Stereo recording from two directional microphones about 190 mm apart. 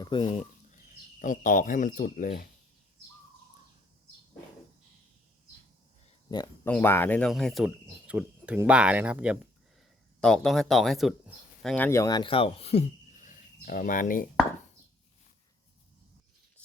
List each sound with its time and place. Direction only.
0.0 s speech: 25° left (ahead or behind)
1.2 s speech: 45° left (ahead or behind)
6.3 s speech: 20° left (ahead or behind)
6.7 s speech: 10° left (ahead or behind); by 14.3 s 45° left (ahead or behind)